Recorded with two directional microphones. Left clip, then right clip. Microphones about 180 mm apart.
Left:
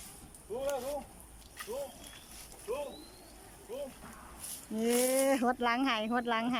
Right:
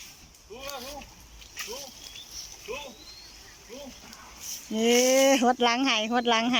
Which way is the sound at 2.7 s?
Centre (ahead or behind).